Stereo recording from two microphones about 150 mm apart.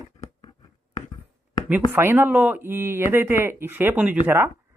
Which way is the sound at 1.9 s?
15° right (ahead or behind).